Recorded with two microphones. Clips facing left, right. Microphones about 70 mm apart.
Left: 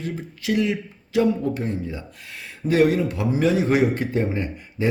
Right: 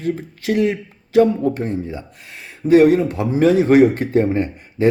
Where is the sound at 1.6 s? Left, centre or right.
Right.